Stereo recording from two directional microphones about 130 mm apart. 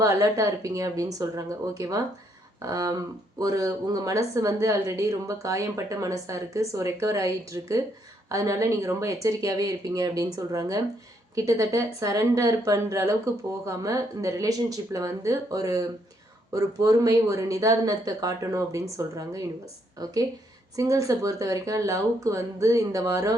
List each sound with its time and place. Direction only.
0.0 s speech: 25° right (ahead or behind)